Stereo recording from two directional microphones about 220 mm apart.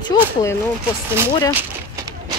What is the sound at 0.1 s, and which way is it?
Speech, 15° left (ahead or behind).